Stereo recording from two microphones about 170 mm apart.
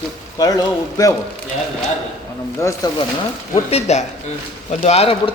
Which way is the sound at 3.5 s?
40° left (ahead or behind).